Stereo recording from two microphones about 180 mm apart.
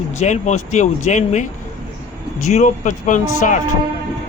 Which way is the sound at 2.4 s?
40° left (ahead or behind).